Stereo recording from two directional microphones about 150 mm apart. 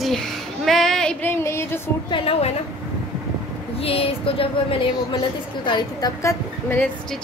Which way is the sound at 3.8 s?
40° left (ahead or behind).